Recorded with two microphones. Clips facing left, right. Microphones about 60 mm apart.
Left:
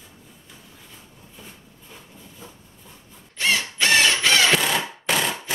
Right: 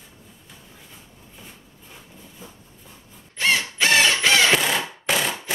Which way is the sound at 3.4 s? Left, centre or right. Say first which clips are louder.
Right 1 dB; centre.